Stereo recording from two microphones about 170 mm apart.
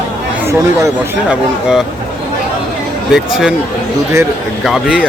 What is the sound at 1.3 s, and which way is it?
Speech, 5° right (ahead or behind).